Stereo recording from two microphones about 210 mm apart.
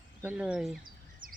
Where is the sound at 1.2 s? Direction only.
40° right (ahead or behind).